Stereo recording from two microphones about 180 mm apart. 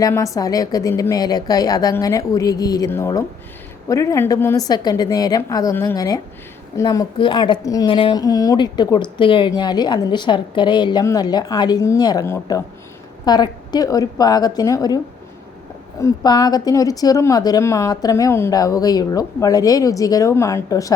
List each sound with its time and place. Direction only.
0.0 s a woman's voice: 20° left (ahead or behind)